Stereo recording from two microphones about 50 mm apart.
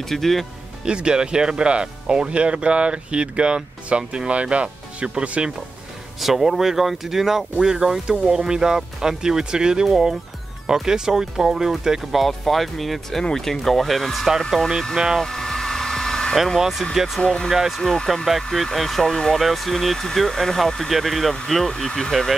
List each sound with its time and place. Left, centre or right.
0.0 s speech: centre
0.8 s speech: centre
6.1 s speech: centre
15.2 s hair dryer: centre
16.5 s speech: centre
17.7 s speech: centre